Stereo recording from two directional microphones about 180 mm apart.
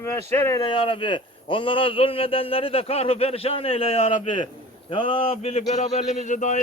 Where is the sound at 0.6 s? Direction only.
30° left (ahead or behind).